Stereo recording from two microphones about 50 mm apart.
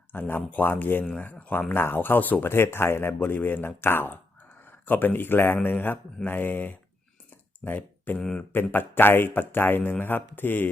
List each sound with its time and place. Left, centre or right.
0.1 s speech: left
1.7 s speech: left
2.5 s speech: left
3.2 s speech: left